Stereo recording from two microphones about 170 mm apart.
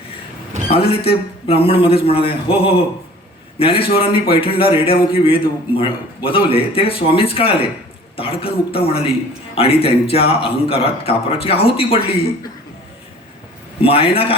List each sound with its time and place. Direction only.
0.7 s a man's voice: 35° left (ahead or behind)
13.8 s a man's voice: 35° left (ahead or behind)